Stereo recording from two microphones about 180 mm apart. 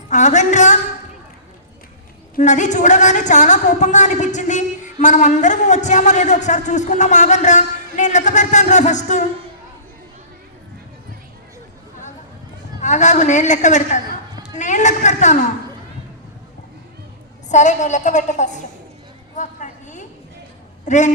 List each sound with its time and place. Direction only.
0.1 s music: 40° left (ahead or behind)
2.3 s a woman's voice: 40° left (ahead or behind)
12.8 s a woman's voice: 40° left (ahead or behind)
17.5 s a woman's voice: 40° left (ahead or behind)
19.4 s a sound: 45° left (ahead or behind)
20.8 s a man's voice: 40° left (ahead or behind)